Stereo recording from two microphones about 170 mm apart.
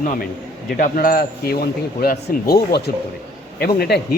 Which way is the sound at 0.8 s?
60° left (ahead or behind).